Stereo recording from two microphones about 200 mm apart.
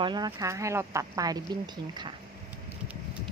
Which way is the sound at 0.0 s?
20° right (ahead or behind).